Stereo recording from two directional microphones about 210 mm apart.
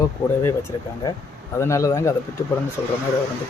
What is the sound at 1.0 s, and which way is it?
Speech, 15° left (ahead or behind).